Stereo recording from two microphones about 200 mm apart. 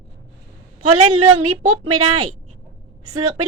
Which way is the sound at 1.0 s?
90° right.